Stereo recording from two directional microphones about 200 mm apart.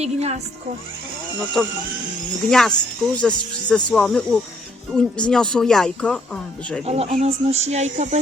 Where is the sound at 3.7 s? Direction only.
5° left (ahead or behind).